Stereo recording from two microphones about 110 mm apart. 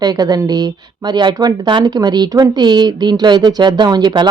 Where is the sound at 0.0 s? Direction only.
35° right (ahead or behind).